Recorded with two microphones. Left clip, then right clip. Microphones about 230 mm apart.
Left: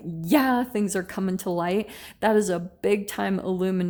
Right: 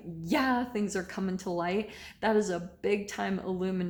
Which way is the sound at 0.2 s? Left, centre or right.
Left.